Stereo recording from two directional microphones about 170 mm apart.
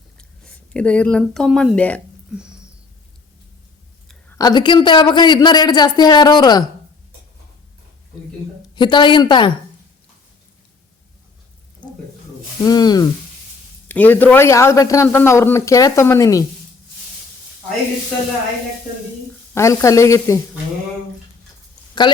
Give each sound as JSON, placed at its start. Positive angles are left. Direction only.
{"t": 0.5, "sound": "a man's voice", "side_deg": 5}
{"t": 2.3, "sound": "a sound", "side_deg": -5}
{"t": 4.4, "sound": "a man's voice", "side_deg": 25}
{"t": 8.7, "sound": "a man's voice", "side_deg": 25}
{"t": 12.6, "sound": "a man's voice", "side_deg": 25}
{"t": 13.8, "sound": "a man's voice", "side_deg": 10}
{"t": 19.5, "sound": "a man's voice", "side_deg": 20}
{"t": 22.0, "sound": "a man's voice", "side_deg": 30}